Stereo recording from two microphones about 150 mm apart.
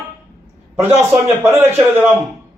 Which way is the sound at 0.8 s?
15° right (ahead or behind).